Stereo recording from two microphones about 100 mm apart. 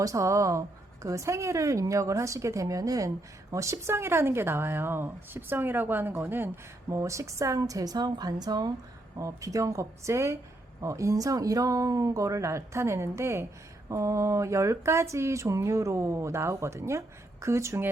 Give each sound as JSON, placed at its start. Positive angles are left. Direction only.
{"t": 0.0, "sound": "speech", "side_deg": -35}